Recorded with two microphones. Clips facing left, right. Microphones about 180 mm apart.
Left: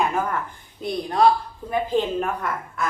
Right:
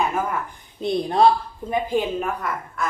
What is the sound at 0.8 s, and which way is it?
Speech, 25° right (ahead or behind).